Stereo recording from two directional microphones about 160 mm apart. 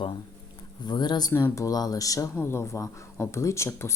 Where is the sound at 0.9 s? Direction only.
25° left (ahead or behind).